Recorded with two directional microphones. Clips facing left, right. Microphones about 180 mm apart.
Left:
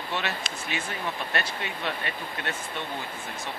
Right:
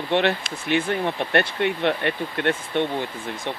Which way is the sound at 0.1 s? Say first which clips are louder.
Right 11 dB; 60° right (ahead or behind).